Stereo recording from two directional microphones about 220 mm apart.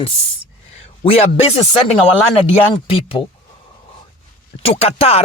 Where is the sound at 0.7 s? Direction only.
25° left (ahead or behind).